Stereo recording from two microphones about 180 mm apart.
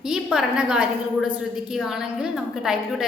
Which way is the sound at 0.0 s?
5° right (ahead or behind).